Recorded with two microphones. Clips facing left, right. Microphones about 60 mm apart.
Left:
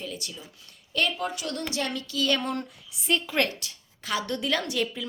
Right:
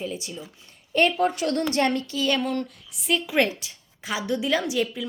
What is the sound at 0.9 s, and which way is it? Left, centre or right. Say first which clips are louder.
A woman's voice: right 7 dB; right.